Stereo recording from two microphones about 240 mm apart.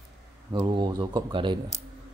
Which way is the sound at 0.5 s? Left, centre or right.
Centre.